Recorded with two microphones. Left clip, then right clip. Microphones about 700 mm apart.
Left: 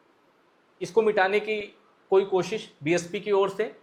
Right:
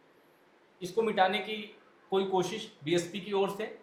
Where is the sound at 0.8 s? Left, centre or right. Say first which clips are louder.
Left 5 dB; left.